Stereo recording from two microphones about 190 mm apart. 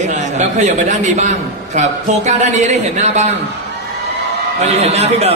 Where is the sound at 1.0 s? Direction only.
40° right (ahead or behind).